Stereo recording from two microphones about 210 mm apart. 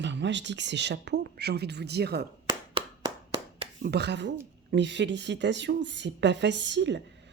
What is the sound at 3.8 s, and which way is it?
A woman's voice, 50° right (ahead or behind).